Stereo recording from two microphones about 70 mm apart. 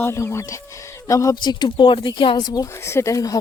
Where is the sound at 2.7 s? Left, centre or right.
Left.